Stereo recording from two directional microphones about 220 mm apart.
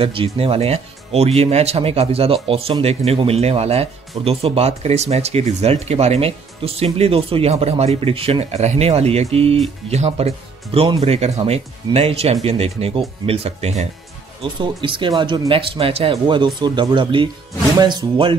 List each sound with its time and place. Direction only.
0.0 s speech: 25° right (ahead or behind)